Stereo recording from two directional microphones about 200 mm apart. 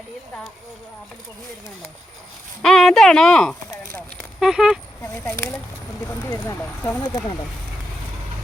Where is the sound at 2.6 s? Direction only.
Centre (ahead or behind).